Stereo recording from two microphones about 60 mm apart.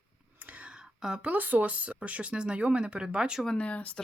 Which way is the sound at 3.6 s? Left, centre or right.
Left.